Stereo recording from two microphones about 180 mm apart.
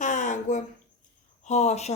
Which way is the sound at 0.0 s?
45° left (ahead or behind).